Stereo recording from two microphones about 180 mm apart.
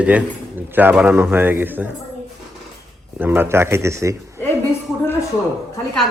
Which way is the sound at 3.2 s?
10° right (ahead or behind).